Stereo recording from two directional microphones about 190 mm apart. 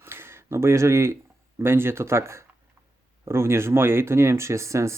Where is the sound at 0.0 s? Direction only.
15° right (ahead or behind).